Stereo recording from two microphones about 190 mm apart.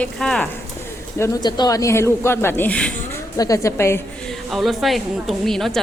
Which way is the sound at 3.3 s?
15° left (ahead or behind).